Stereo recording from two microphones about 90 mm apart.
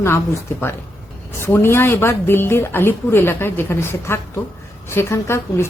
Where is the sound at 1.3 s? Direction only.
25° left (ahead or behind).